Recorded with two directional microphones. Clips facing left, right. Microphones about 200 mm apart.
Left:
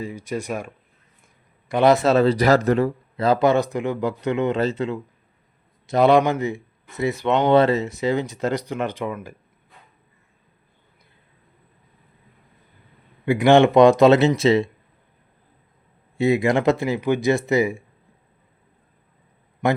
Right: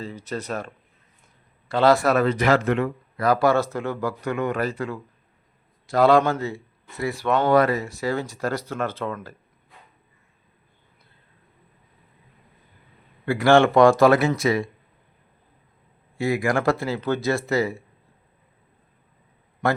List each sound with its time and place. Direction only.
0.0 s a man's voice: 10° left (ahead or behind); by 2.9 s 35° left (ahead or behind)
3.2 s speech: 20° left (ahead or behind)
13.2 s speech: 20° left (ahead or behind)
16.1 s speech: 20° left (ahead or behind)
19.6 s a man's voice: 15° left (ahead or behind)